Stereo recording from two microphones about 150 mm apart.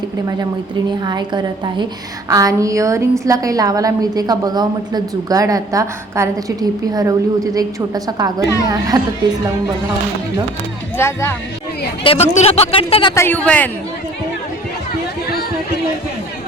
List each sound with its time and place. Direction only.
0.9 s a woman's voice: 30° right (ahead or behind)
10.9 s speech: 15° left (ahead or behind)
12.0 s speech: 45° left (ahead or behind)
13.1 s speech: 15° left (ahead or behind)